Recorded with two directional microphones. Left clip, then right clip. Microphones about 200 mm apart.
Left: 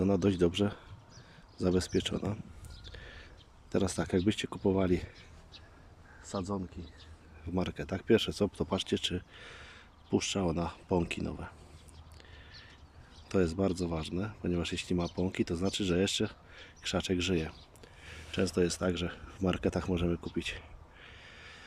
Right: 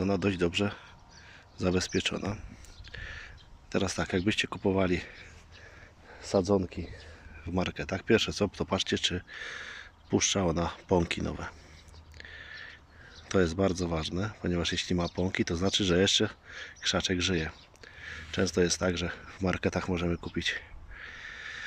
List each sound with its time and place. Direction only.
0.0 s speech: 10° left (ahead or behind)
2.9 s a sound: 10° left (ahead or behind)
3.7 s speech: 10° left (ahead or behind)
6.2 s speech: 15° right (ahead or behind)
7.5 s speech: 5° left (ahead or behind)
12.1 s a sound: 5° left (ahead or behind)
13.2 s speech: 5° left (ahead or behind)